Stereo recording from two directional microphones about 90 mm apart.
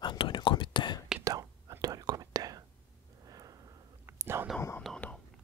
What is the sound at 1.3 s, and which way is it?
Whispering, 40° right (ahead or behind).